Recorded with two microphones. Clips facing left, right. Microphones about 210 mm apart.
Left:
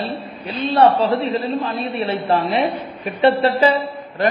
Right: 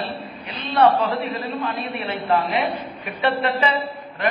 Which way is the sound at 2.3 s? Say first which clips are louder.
Left 1 dB; 30° left (ahead or behind).